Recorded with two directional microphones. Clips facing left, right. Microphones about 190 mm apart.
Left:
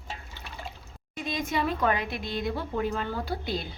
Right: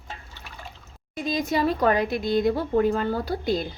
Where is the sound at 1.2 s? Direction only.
35° right (ahead or behind).